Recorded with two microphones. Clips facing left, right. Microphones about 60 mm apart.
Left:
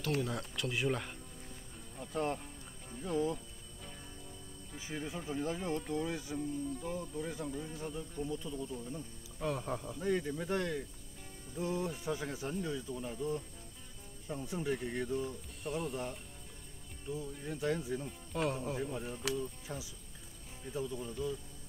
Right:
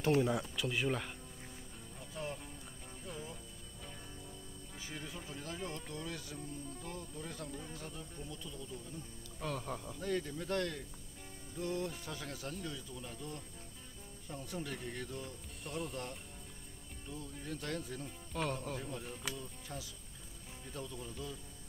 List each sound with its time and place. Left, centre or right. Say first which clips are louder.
0.3 s speech: right 2 dB; centre
2.1 s speech: left 8 dB; left
3.0 s speech: left 13 dB; left
4.7 s speech: left 6 dB; centre
8.3 s speech: left 7 dB; left
9.4 s speech: left 4 dB; centre
15.6 s speech: left 4 dB; centre